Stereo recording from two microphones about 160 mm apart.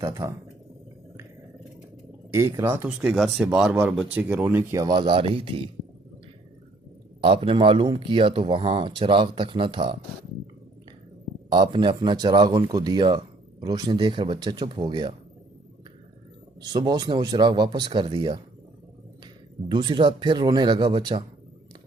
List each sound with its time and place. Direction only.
0.0 s speech: 25° right (ahead or behind)
2.3 s speech: 20° right (ahead or behind)
4.7 s speech: 25° right (ahead or behind)
7.2 s speech: 35° right (ahead or behind)
11.5 s speech: 30° right (ahead or behind)
16.6 s speech: 25° right (ahead or behind)
19.6 s speech: 30° right (ahead or behind)